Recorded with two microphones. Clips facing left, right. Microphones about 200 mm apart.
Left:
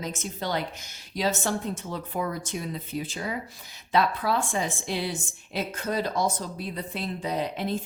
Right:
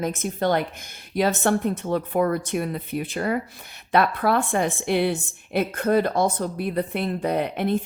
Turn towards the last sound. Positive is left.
turn(degrees=-60)  # may be behind; listen again after turning